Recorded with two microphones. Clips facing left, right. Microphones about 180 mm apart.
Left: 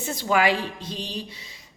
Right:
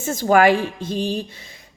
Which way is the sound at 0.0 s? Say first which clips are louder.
Right 7 dB; 45° right (ahead or behind).